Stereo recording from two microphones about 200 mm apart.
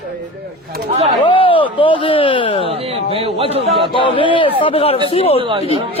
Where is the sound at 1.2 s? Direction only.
25° left (ahead or behind).